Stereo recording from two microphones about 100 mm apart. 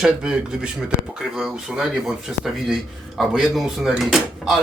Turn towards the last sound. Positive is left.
turn(degrees=-5)  # may be behind; listen again after turning